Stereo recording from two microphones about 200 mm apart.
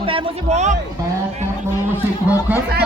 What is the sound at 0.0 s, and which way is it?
Speech, 30° right (ahead or behind).